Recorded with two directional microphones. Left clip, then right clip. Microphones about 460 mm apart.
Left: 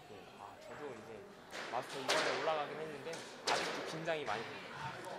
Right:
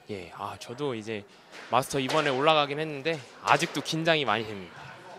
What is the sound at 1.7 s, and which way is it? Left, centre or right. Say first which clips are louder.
Speech: right 16 dB; right.